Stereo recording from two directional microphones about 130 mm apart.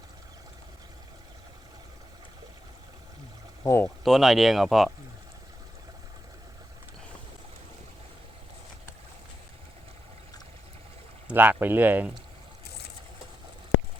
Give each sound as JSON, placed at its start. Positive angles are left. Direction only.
{"t": 3.6, "sound": "speech", "side_deg": 20}
{"t": 3.8, "sound": "speech", "side_deg": 0}
{"t": 11.3, "sound": "speech", "side_deg": -15}